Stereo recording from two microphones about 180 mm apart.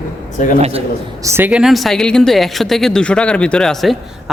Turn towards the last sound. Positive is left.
turn(degrees=0)  # may be behind; listen again after turning